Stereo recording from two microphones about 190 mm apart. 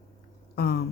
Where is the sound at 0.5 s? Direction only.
60° left (ahead or behind).